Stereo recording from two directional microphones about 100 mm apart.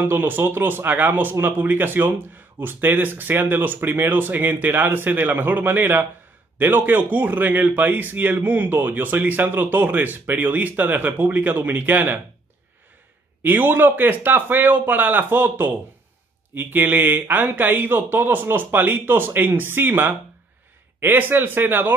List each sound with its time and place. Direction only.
0.0 s speech: 20° right (ahead or behind)
13.4 s speech: 20° right (ahead or behind)